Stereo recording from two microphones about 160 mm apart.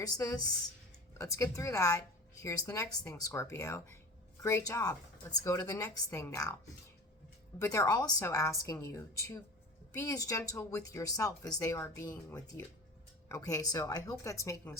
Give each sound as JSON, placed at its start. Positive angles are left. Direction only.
{"t": 0.0, "sound": "speech", "side_deg": 20}
{"t": 7.6, "sound": "speech", "side_deg": 20}